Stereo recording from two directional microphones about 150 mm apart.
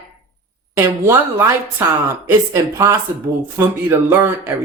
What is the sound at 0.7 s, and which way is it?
A woman's voice, 15° right (ahead or behind).